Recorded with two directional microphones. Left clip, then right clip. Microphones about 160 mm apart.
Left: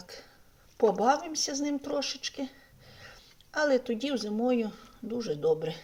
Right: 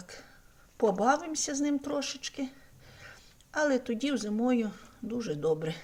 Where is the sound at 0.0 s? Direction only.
10° right (ahead or behind).